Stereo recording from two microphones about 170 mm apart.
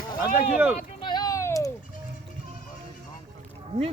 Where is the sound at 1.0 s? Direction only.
25° left (ahead or behind).